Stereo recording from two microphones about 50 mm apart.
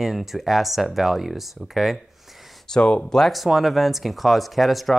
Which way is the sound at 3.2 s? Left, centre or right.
Centre.